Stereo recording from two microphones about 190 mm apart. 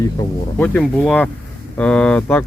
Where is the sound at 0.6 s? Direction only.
5° left (ahead or behind).